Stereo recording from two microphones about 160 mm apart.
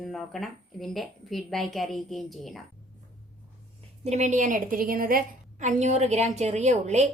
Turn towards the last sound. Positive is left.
turn(degrees=-45)  # may be behind; listen again after turning